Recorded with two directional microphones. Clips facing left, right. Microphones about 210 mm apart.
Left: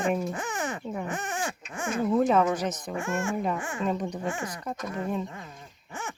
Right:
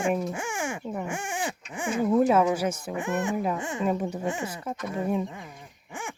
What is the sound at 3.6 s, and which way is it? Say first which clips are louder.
Speech: right 2 dB; 20° right (ahead or behind).